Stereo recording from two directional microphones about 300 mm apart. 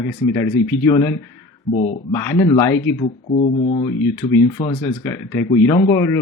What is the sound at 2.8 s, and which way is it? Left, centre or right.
Speech, left.